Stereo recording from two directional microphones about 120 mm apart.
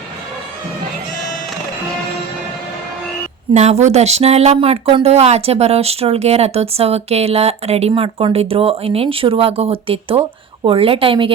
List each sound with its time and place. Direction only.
3.5 s speech: 70° right (ahead or behind)
4.5 s speech: 50° right (ahead or behind)